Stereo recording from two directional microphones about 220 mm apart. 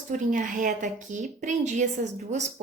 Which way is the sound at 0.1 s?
35° right (ahead or behind).